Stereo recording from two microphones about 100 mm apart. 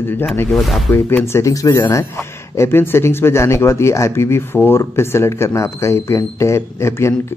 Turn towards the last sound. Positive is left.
turn(degrees=25)  # may be behind; listen again after turning